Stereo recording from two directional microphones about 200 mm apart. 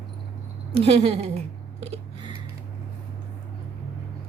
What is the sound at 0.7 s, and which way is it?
Speech, 30° right (ahead or behind).